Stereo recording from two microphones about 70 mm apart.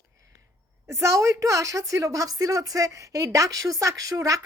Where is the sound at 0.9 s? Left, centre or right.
Right.